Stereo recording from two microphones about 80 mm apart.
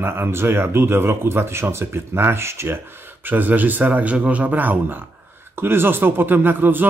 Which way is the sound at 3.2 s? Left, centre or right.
Right.